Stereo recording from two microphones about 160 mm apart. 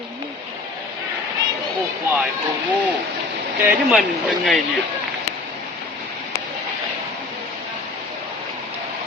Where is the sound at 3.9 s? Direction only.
Centre (ahead or behind).